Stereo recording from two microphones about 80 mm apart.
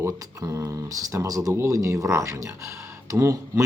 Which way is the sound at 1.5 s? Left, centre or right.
Right.